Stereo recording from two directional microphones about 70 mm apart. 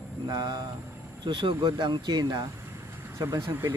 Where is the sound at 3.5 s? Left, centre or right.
Right.